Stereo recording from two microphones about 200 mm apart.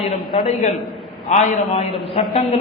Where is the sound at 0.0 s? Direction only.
30° left (ahead or behind).